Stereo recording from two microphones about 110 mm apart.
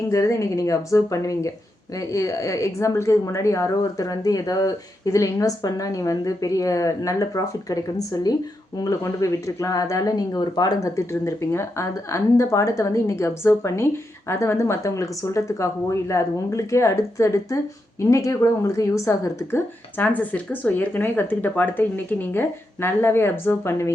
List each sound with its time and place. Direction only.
0.1 s a woman's voice: 30° left (ahead or behind)